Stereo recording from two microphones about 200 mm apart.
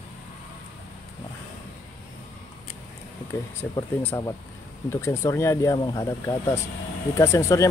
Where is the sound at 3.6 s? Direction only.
15° left (ahead or behind).